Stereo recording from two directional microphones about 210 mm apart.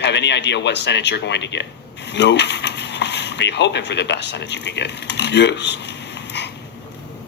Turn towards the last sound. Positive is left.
turn(degrees=55)  # may be behind; listen again after turning